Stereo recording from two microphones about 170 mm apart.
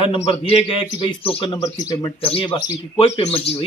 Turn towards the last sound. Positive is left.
turn(degrees=35)  # may be behind; listen again after turning